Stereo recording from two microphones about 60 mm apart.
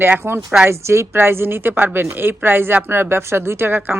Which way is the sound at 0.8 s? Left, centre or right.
Right.